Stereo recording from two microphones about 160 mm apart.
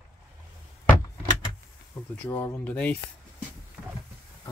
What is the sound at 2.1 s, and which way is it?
Speech, 10° left (ahead or behind).